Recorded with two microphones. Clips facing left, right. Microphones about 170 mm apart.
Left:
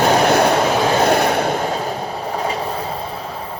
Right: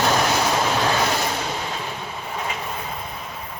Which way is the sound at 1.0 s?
60° left (ahead or behind).